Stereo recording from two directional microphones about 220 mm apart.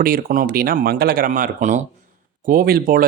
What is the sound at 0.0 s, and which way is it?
Speech, 40° right (ahead or behind).